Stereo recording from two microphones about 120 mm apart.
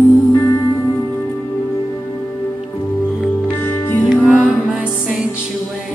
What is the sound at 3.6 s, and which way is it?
Music, 20° left (ahead or behind).